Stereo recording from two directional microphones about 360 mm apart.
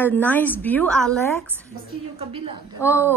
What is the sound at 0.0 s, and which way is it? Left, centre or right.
A woman's voice, centre.